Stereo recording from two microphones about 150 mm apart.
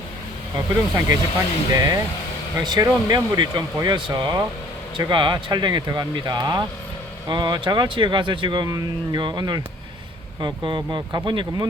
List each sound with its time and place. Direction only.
0.5 s speech: 20° right (ahead or behind)